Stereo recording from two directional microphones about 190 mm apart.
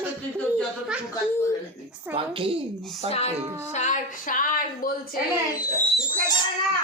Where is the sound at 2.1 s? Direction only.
30° right (ahead or behind).